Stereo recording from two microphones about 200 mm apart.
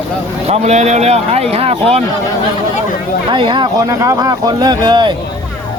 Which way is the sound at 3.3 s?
25° right (ahead or behind).